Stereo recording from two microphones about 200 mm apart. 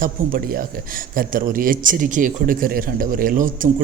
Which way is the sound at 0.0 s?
45° right (ahead or behind).